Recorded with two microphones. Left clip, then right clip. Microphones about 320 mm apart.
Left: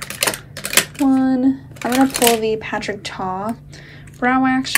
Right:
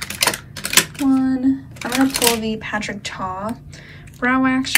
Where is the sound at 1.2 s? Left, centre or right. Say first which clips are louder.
Left 2 dB; centre.